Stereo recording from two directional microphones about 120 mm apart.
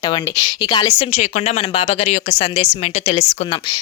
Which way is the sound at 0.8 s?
55° left (ahead or behind).